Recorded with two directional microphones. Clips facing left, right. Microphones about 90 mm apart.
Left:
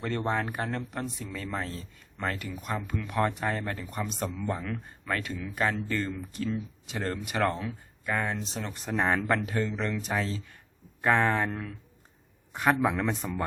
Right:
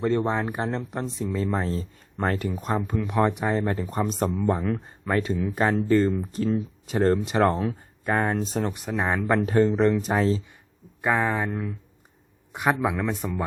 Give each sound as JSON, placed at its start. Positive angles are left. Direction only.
{"t": 0.0, "sound": "speech", "side_deg": -20}
{"t": 8.7, "sound": "speech", "side_deg": -5}
{"t": 9.4, "sound": "speech", "side_deg": -40}
{"t": 11.0, "sound": "speech", "side_deg": -5}
{"t": 12.8, "sound": "speech", "side_deg": -5}